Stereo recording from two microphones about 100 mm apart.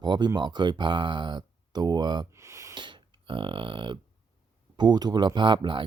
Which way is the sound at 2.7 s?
50° right (ahead or behind).